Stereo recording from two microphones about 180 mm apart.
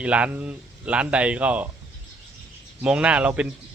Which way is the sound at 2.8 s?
5° right (ahead or behind).